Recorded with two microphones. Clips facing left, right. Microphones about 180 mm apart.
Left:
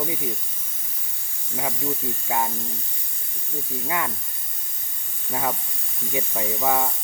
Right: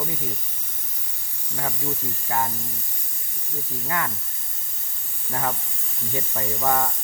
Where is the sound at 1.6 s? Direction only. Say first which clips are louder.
Left 2 dB; 10° left (ahead or behind).